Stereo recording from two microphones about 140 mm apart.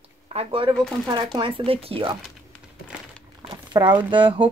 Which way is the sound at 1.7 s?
40° right (ahead or behind).